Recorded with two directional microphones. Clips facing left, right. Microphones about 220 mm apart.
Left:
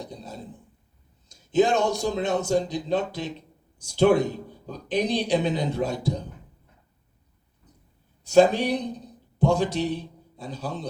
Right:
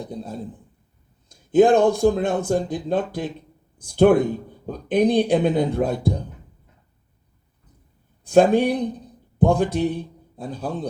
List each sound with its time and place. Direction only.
0.0 s speech: 55° right (ahead or behind)
8.2 s a man's voice: 55° right (ahead or behind)